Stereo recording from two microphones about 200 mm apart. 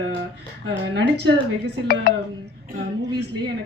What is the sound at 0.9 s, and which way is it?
Speech, 60° right (ahead or behind).